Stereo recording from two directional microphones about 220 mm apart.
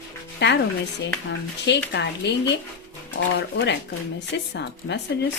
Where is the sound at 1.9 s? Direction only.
50° left (ahead or behind).